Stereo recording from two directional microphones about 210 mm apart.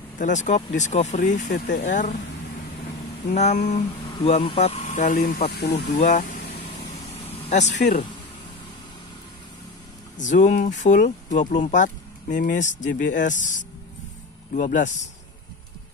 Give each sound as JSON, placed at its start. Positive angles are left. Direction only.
{"t": 0.2, "sound": "speech", "side_deg": 35}
{"t": 3.3, "sound": "speech", "side_deg": 30}
{"t": 5.9, "sound": "vehicle", "side_deg": 35}
{"t": 6.6, "sound": "vehicle", "side_deg": 30}
{"t": 10.1, "sound": "speech", "side_deg": 35}